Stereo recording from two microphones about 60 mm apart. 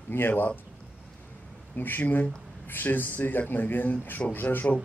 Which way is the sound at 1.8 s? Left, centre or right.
Left.